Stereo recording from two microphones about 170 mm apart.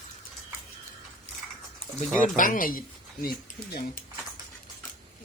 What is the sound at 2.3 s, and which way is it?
Speech, 55° left (ahead or behind).